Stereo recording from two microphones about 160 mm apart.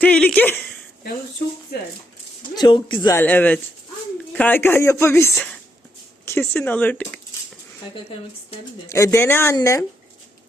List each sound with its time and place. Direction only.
0.0 s speech: 5° left (ahead or behind)
2.6 s speech: 30° left (ahead or behind)
3.2 s speech: 10° left (ahead or behind)
8.9 s speech: 15° left (ahead or behind)